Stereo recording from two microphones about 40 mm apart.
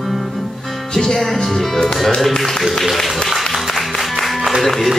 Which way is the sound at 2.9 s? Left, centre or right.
Centre.